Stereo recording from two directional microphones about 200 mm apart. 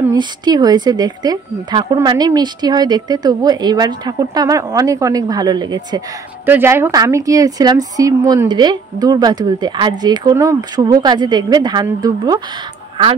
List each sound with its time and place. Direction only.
0.1 s speech: 20° right (ahead or behind)